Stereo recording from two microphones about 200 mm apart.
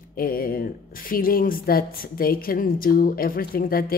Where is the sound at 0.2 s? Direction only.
45° left (ahead or behind).